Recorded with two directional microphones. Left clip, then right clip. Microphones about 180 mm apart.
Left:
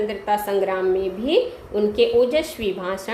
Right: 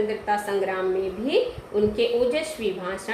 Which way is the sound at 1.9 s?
50° left (ahead or behind).